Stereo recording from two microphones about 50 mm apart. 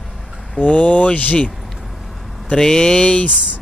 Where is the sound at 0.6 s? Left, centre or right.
Left.